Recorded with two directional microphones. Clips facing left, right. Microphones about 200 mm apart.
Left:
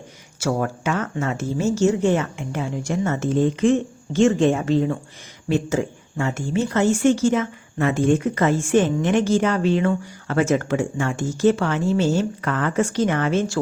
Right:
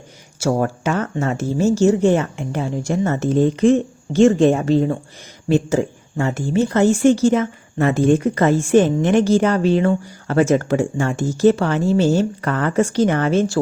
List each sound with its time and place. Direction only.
0.3 s speech: 35° right (ahead or behind)